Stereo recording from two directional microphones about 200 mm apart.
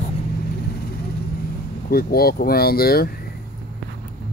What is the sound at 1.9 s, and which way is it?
Speech, 50° left (ahead or behind).